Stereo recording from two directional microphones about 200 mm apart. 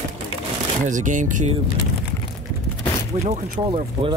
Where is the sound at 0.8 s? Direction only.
40° right (ahead or behind).